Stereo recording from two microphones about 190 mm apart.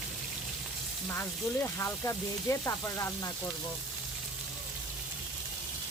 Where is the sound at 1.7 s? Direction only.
15° left (ahead or behind).